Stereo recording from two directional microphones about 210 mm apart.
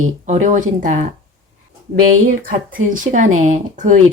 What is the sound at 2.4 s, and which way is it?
Speech, 40° right (ahead or behind).